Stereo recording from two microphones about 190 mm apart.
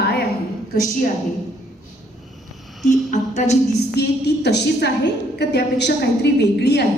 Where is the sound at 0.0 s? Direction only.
55° left (ahead or behind).